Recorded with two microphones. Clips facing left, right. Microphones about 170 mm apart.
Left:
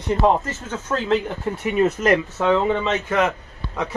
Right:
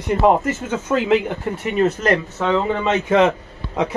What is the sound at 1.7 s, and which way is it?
Speech, 15° left (ahead or behind).